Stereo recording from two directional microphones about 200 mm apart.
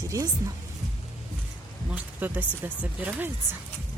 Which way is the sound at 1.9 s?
10° right (ahead or behind).